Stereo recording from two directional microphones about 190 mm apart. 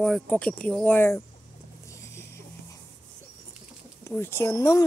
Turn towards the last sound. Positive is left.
turn(degrees=15)  # may be behind; listen again after turning